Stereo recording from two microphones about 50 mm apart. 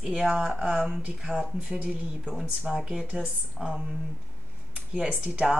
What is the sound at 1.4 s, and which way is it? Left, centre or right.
Speech, centre.